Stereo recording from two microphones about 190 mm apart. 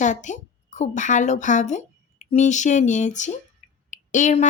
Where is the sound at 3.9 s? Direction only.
40° left (ahead or behind).